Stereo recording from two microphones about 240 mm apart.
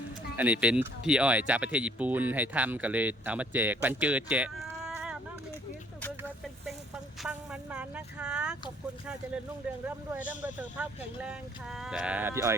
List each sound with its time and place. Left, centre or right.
0.3 s speech: centre
7.2 s vehicle: centre
9.8 s speech: centre